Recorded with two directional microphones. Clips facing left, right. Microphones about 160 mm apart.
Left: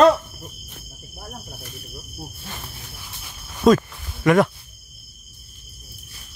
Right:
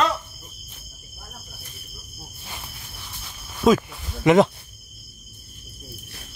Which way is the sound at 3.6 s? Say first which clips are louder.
Left 2 dB; 5° right (ahead or behind).